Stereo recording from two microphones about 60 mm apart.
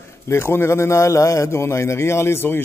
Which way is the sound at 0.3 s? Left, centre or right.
Left.